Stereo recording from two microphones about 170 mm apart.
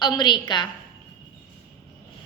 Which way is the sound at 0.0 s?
25° left (ahead or behind).